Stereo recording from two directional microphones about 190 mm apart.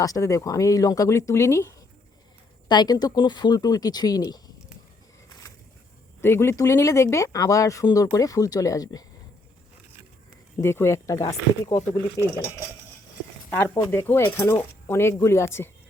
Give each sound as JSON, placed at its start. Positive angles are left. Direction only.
{"t": 0.0, "sound": "speech", "side_deg": 15}
{"t": 6.2, "sound": "speech", "side_deg": 15}
{"t": 10.6, "sound": "speech", "side_deg": 15}
{"t": 13.7, "sound": "speech", "side_deg": 15}